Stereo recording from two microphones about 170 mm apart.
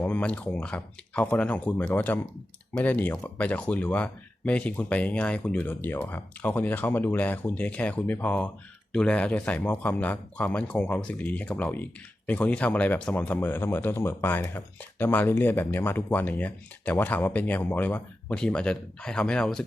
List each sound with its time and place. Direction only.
0.0 s speech: 10° left (ahead or behind)